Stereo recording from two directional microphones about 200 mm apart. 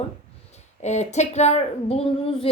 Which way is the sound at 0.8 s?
35° left (ahead or behind).